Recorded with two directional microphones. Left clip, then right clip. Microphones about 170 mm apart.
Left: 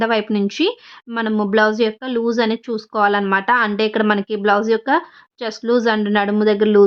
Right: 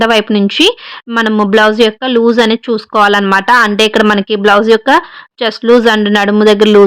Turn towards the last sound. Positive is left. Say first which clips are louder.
# right 9 dB
turn(degrees=-30)  # may be behind; listen again after turning